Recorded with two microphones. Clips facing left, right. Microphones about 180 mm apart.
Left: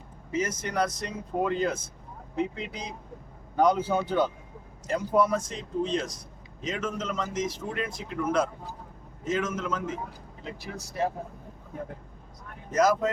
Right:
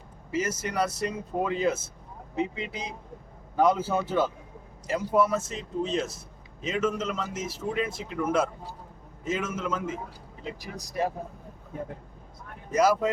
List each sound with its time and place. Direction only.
0.3 s a man's voice: 5° right (ahead or behind)
12.7 s a man's voice: 10° right (ahead or behind)